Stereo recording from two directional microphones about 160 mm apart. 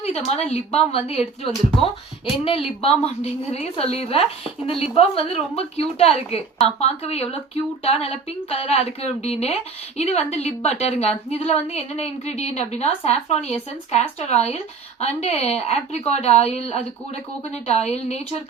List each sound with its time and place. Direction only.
0.0 s a woman's voice: 40° left (ahead or behind)
2.4 s a woman's voice: 35° left (ahead or behind)